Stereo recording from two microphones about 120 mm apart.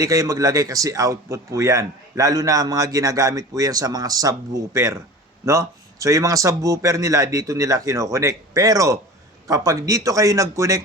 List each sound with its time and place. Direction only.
0.0 s speech: 30° right (ahead or behind)